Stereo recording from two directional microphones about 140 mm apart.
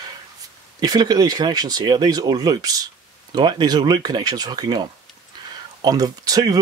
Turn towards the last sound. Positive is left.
turn(degrees=-25)  # may be behind; listen again after turning